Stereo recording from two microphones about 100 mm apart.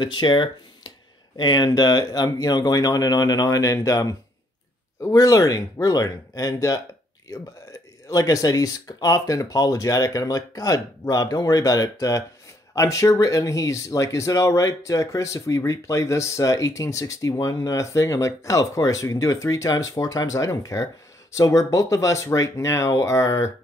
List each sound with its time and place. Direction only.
0.0 s speech: 50° left (ahead or behind)
8.1 s speech: 35° left (ahead or behind)